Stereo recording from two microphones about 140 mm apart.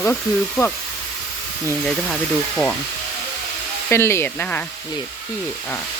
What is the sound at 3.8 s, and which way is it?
Speech, 20° left (ahead or behind).